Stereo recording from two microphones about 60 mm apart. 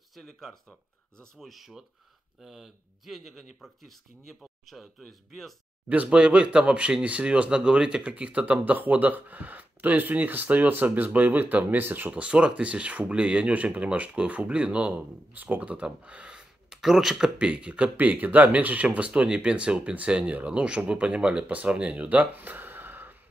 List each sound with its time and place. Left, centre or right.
0.1 s speech: centre
5.9 s speech: right
12.1 s speech: centre
17.4 s speech: centre